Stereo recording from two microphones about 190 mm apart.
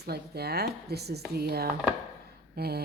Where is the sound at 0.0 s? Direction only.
55° right (ahead or behind).